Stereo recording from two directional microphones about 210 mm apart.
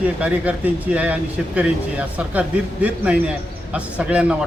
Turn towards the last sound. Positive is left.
turn(degrees=-5)  # may be behind; listen again after turning